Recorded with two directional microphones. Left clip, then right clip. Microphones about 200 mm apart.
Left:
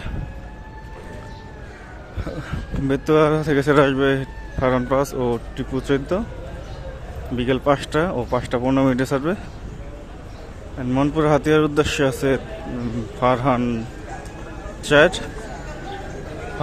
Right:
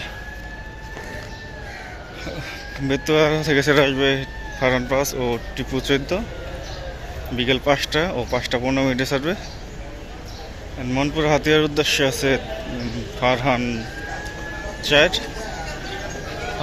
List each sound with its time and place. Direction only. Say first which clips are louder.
2.8 s speech: left 1 dB; 20° left (ahead or behind)
7.3 s speech: even; 20° left (ahead or behind)
10.8 s speech: left 2 dB; 25° left (ahead or behind)
14.8 s speech: left 1 dB; 30° left (ahead or behind)